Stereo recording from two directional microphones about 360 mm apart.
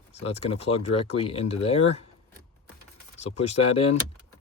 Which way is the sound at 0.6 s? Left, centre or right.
Centre.